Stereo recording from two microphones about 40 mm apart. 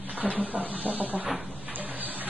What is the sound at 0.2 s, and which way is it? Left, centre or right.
A woman's voice, right.